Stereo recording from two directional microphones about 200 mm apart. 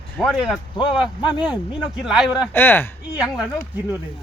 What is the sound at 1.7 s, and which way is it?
Speech, 5° right (ahead or behind).